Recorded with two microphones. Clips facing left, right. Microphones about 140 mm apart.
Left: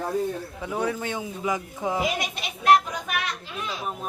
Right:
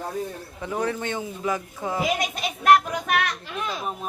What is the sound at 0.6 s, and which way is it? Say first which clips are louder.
A man's voice: right 2 dB; 5° left (ahead or behind).